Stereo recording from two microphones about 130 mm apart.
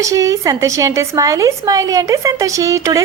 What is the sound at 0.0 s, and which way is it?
A woman's voice, 25° right (ahead or behind).